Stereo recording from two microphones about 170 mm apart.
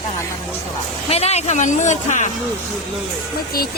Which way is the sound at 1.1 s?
40° left (ahead or behind).